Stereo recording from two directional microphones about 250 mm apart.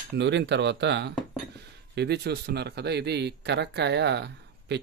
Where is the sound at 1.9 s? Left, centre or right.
Right.